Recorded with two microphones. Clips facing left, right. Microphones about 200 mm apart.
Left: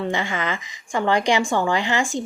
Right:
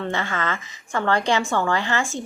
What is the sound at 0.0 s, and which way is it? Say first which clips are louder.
Speech: left 1 dB; 15° left (ahead or behind).